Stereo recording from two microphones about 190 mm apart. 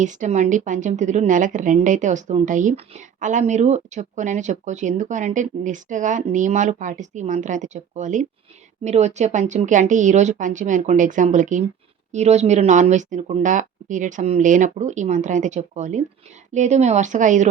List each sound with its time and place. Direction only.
0.0 s a woman's voice: 40° right (ahead or behind)